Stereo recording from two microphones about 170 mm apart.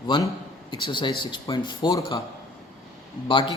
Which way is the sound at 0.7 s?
30° left (ahead or behind).